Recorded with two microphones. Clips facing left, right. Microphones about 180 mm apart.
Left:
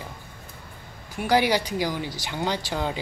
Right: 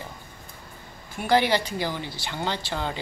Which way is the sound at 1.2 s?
10° left (ahead or behind).